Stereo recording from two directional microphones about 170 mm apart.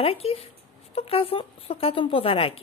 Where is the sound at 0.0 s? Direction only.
35° left (ahead or behind).